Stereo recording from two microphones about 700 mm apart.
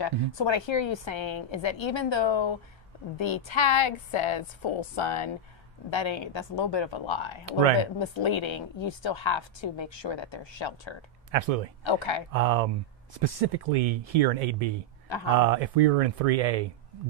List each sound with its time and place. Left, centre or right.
0.0 s a woman's voice: left
11.3 s speech: right
11.8 s a woman's voice: left
12.3 s speech: right